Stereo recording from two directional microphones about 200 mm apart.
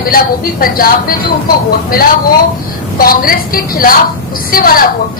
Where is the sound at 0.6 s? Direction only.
45° left (ahead or behind).